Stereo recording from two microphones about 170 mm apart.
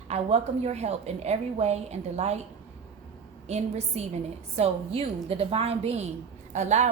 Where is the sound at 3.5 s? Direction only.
40° right (ahead or behind).